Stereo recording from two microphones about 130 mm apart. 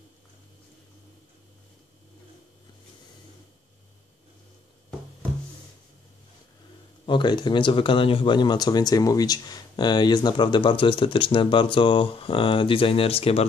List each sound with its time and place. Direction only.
7.1 s speech: 35° left (ahead or behind)